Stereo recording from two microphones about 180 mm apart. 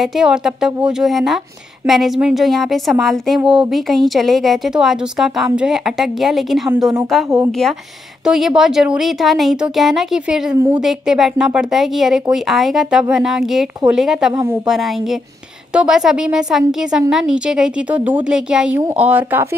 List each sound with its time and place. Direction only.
0.0 s speech: centre (ahead or behind)
8.3 s speech: centre (ahead or behind)
10.5 s a woman's voice: 20° right (ahead or behind)
10.8 s speech: centre (ahead or behind)
14.3 s speech: 15° right (ahead or behind)
14.7 s speech: centre (ahead or behind)